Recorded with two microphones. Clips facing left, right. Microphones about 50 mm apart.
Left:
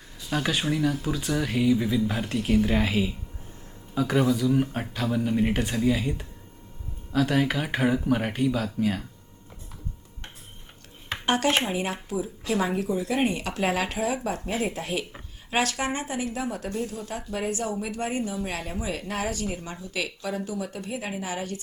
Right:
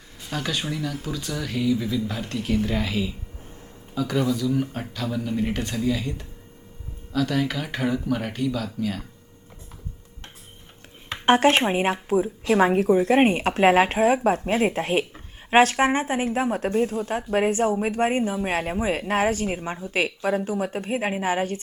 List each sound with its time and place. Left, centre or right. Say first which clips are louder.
0.3 s speech: left 2 dB; centre
11.3 s speech: right 6 dB; right